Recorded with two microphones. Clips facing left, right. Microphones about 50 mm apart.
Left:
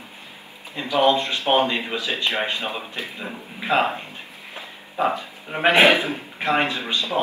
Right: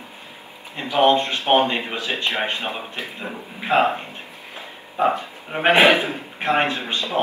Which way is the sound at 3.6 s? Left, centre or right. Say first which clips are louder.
Right 2 dB; centre.